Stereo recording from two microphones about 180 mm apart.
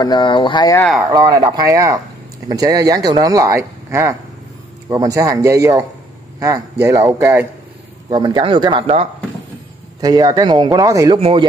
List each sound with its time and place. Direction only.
0.0 s speech: 25° left (ahead or behind)
1.1 s a man's voice: 25° right (ahead or behind)
9.9 s speech: 20° right (ahead or behind)
11.1 s speech: 30° right (ahead or behind)